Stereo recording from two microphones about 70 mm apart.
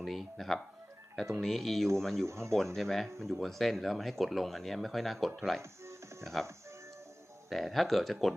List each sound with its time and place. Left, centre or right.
0.0 s speech: centre
2.2 s speech: right
2.7 s speech: centre
5.8 s music: right
6.2 s speech: centre
7.5 s speech: centre